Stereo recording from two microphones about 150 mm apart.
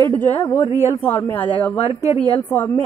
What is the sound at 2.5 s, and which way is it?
Speech, 10° left (ahead or behind).